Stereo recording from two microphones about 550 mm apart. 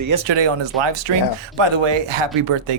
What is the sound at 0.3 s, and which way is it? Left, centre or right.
Speech, right.